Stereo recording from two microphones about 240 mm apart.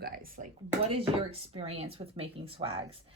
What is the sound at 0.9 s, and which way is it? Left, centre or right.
Speech, right.